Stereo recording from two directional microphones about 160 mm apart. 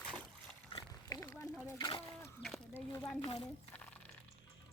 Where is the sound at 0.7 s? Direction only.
30° left (ahead or behind).